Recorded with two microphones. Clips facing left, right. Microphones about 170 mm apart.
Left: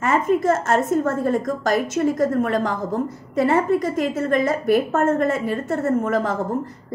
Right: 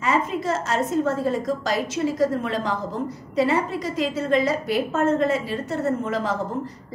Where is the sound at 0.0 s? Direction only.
50° left (ahead or behind).